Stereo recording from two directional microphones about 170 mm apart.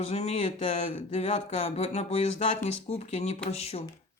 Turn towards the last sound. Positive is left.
turn(degrees=35)  # may be behind; listen again after turning